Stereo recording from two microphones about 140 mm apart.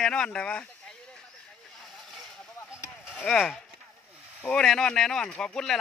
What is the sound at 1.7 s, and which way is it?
Vehicle, centre (ahead or behind).